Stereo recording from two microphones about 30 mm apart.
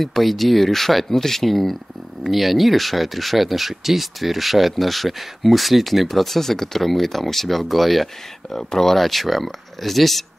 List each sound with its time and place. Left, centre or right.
0.0 s speech: centre
8.5 s speech: centre